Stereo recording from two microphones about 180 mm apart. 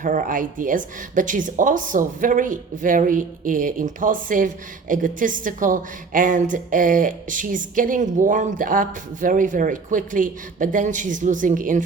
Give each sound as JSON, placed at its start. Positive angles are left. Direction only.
{"t": 0.0, "sound": "speech", "side_deg": -45}